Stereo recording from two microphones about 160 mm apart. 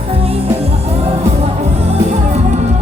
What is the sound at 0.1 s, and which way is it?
Music, 40° right (ahead or behind).